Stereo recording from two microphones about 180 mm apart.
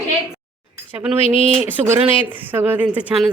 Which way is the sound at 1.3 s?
30° left (ahead or behind).